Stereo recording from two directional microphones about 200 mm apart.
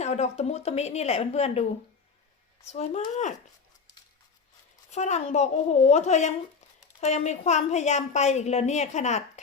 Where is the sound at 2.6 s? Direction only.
35° left (ahead or behind).